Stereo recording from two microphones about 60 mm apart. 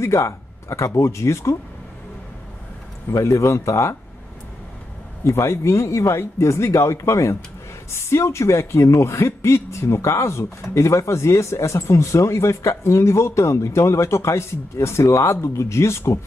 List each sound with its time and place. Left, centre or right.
0.0 s speech: left
3.1 s speech: left
5.2 s a man's voice: left